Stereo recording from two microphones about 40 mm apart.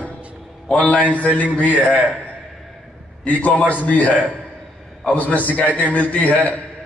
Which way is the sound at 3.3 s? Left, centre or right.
Left.